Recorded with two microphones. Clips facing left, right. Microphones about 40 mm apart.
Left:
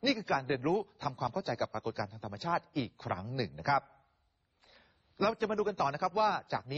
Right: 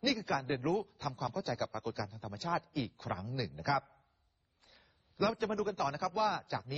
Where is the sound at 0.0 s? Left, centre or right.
Centre.